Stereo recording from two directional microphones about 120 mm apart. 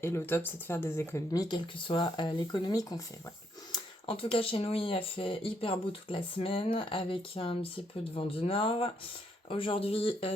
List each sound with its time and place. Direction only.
0.0 s speech: 20° left (ahead or behind)
1.3 s speech: 35° left (ahead or behind)
4.0 s speech: 50° left (ahead or behind)